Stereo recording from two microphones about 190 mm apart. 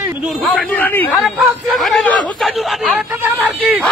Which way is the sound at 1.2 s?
Centre (ahead or behind).